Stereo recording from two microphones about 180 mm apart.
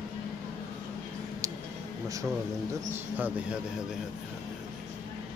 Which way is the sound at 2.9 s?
10° right (ahead or behind).